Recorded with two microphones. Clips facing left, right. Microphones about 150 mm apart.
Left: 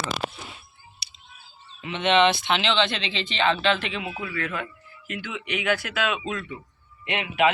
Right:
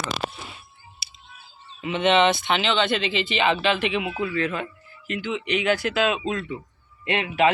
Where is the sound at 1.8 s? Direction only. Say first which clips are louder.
Right 1 dB; 5° right (ahead or behind); by 6.6 s 30° right (ahead or behind).